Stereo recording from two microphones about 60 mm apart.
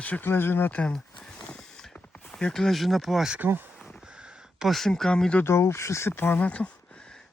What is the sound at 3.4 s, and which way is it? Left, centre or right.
Speech, right.